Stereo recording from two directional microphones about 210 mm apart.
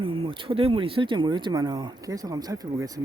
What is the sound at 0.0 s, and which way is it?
Speech, 25° right (ahead or behind).